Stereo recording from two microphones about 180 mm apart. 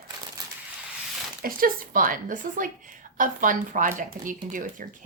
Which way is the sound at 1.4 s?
50° right (ahead or behind).